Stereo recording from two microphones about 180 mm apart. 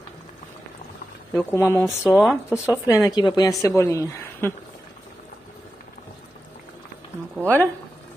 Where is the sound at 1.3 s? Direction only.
15° left (ahead or behind).